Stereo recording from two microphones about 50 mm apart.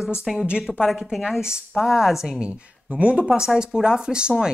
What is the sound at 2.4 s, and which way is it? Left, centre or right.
Speech, right.